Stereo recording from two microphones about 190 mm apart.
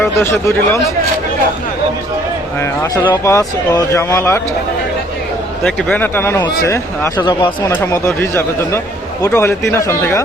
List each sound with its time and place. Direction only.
0.2 s speech: 15° left (ahead or behind)
2.6 s speech: 15° left (ahead or behind)
5.6 s speech: 5° left (ahead or behind)